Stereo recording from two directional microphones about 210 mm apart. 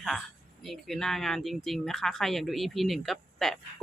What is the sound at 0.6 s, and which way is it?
Speech, centre (ahead or behind).